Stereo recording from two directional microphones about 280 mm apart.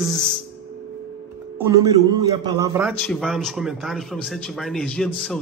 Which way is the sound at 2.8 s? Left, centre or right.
Centre.